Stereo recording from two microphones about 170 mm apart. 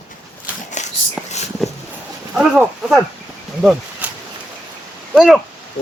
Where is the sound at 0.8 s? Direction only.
45° left (ahead or behind).